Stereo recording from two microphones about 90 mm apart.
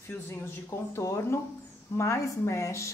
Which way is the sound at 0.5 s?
30° left (ahead or behind).